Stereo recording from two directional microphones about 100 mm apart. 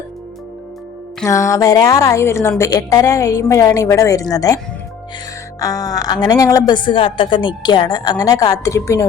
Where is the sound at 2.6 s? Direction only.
40° left (ahead or behind).